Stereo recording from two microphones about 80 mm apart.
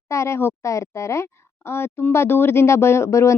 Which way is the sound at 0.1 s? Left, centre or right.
Left.